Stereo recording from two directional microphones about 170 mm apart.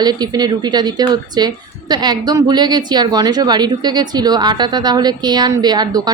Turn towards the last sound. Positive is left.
turn(degrees=-25)  # may be behind; listen again after turning